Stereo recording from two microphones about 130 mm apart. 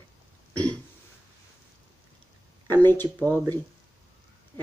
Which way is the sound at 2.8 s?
15° left (ahead or behind).